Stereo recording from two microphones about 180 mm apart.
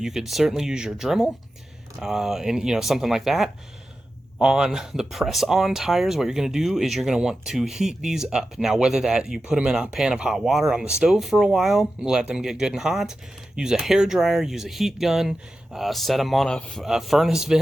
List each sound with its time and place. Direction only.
0.0 s speech: centre (ahead or behind)